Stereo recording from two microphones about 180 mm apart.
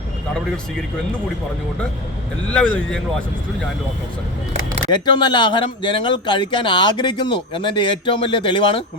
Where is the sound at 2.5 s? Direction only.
5° left (ahead or behind).